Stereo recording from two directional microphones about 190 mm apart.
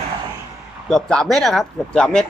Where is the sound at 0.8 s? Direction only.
5° left (ahead or behind).